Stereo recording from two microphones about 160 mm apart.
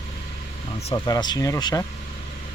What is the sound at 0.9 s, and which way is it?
Speech, 25° left (ahead or behind).